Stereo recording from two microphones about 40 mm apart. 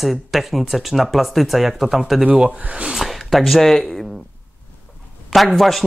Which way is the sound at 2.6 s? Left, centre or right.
Right.